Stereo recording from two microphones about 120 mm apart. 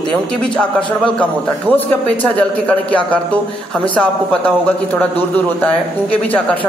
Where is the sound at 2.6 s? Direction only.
10° left (ahead or behind).